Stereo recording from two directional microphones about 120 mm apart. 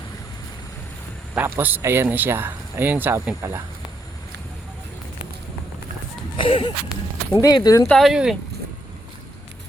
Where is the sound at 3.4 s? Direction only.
20° right (ahead or behind).